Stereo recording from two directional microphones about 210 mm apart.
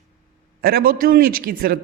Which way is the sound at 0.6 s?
45° right (ahead or behind).